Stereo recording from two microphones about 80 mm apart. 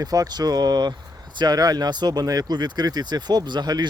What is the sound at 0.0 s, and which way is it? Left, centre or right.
Speech, right.